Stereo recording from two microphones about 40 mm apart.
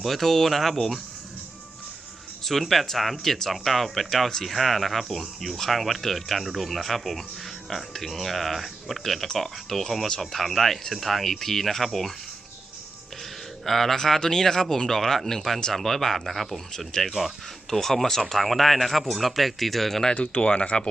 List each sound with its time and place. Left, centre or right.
0.0 s speech: centre
2.4 s speech: centre
13.7 s speech: centre
17.7 s speech: centre
20.1 s speech: left